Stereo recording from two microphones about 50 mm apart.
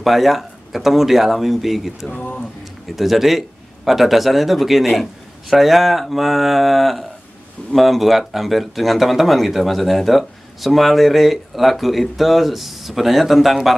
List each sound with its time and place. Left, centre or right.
0.0 s speech: centre
2.0 s speech: left
3.0 s speech: centre